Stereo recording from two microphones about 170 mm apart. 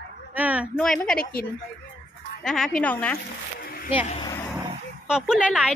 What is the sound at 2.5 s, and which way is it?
Speech, 5° left (ahead or behind).